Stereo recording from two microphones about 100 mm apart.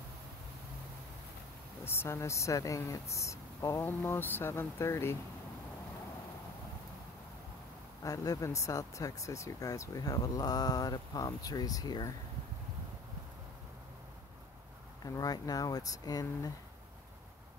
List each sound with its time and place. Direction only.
1.9 s speech: 25° left (ahead or behind)
8.0 s speech: 35° left (ahead or behind)
15.0 s speech: 40° left (ahead or behind)